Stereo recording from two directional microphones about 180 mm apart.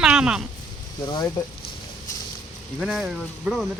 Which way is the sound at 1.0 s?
15° left (ahead or behind).